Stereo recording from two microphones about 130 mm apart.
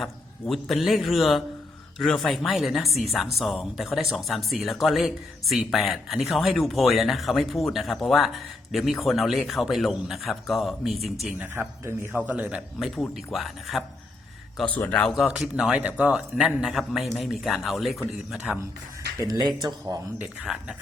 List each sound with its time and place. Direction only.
0.0 s a woman's voice: centre (ahead or behind)
11.3 s a man's voice: 15° right (ahead or behind)
14.6 s a man's voice: 10° left (ahead or behind)
15.2 s a woman's voice: 5° right (ahead or behind)
19.2 s speech: 30° right (ahead or behind)
20.1 s a man's voice: 5° right (ahead or behind)